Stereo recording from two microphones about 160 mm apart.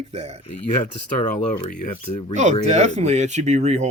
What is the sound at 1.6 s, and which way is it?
Speech, 50° left (ahead or behind).